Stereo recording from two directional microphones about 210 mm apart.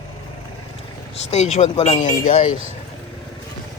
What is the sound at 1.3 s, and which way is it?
Speech, 35° left (ahead or behind).